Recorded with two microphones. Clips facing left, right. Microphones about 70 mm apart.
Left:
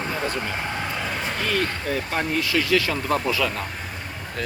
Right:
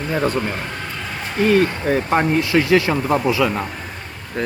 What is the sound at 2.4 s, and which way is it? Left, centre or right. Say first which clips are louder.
Speech: right 6 dB; right.